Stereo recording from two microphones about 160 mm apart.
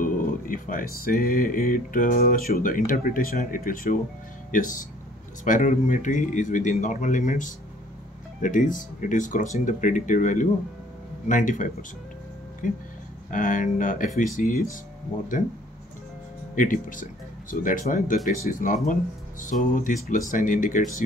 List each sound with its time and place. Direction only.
0.0 s speech: 60° left (ahead or behind)
16.5 s speech: 55° left (ahead or behind)